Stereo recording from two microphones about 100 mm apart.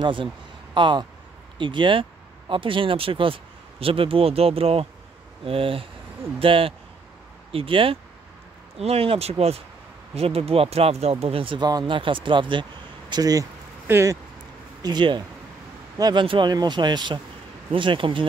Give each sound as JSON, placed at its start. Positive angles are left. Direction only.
{"t": 0.0, "sound": "speech", "side_deg": -55}
{"t": 8.7, "sound": "speech", "side_deg": -80}
{"t": 10.1, "sound": "speech", "side_deg": -75}
{"t": 13.1, "sound": "speech", "side_deg": -40}
{"t": 13.8, "sound": "speech", "side_deg": -25}
{"t": 14.8, "sound": "speech", "side_deg": -45}